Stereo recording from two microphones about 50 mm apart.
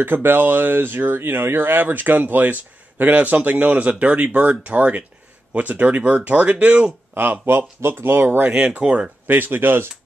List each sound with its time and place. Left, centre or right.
0.0 s speech: right
7.2 s speech: right
8.5 s speech: right
9.3 s speech: right